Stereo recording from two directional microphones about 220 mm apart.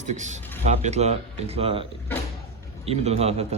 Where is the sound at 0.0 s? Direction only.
35° right (ahead or behind).